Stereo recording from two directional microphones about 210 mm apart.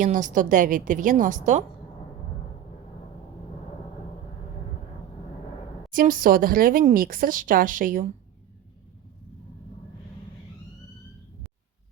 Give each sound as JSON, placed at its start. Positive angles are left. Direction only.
{"t": 0.0, "sound": "speech", "side_deg": -35}
{"t": 5.9, "sound": "speech", "side_deg": -40}